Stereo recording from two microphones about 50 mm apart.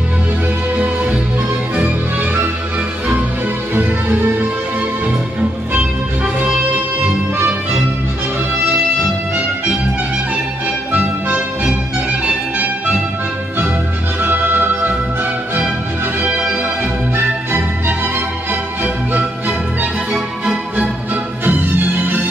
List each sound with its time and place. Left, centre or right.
0.7 s music: right
3.7 s music: right
10.9 s music: right
14.2 s music: right
16.2 s music: right
17.2 s music: right
21.1 s music: right